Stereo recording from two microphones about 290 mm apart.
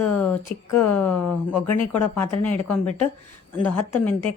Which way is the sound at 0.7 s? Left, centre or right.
Left.